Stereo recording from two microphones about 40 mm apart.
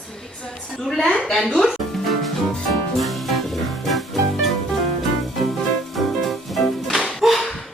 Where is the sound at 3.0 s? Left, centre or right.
Centre.